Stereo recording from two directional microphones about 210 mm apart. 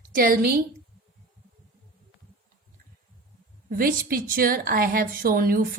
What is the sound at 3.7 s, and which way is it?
A woman's voice, 45° right (ahead or behind).